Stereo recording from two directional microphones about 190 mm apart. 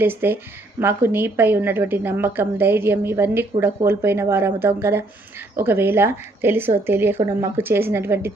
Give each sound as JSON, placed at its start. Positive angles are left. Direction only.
{"t": 0.0, "sound": "a woman's voice", "side_deg": -10}